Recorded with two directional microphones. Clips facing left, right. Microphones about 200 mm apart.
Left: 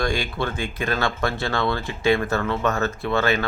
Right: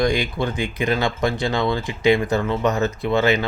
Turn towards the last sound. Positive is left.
turn(degrees=-15)  # may be behind; listen again after turning